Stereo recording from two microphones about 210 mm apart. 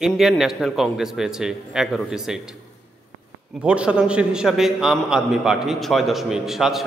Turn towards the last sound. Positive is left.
turn(degrees=0)  # may be behind; listen again after turning